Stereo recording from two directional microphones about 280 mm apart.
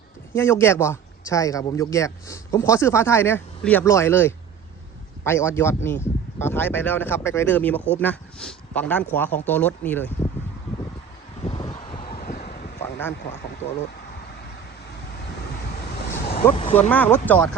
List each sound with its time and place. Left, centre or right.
0.3 s speech: centre
11.4 s vehicle: left
16.2 s vehicle: centre
16.9 s speech: centre